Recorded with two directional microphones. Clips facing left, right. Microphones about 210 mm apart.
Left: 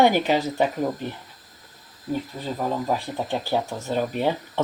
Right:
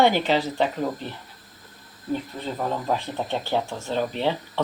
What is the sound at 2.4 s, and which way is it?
Speech, 5° left (ahead or behind).